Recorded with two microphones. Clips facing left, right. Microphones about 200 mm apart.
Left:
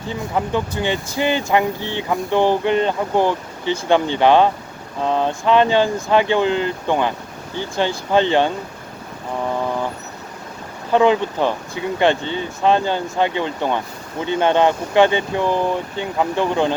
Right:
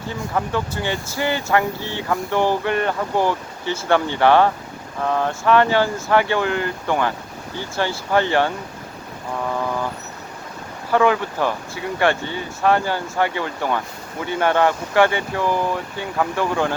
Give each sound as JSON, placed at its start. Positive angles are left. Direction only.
{"t": 0.1, "sound": "speech", "side_deg": 20}
{"t": 10.9, "sound": "speech", "side_deg": 20}